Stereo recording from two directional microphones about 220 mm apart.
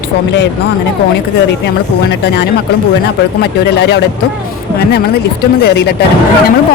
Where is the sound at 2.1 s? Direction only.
50° left (ahead or behind).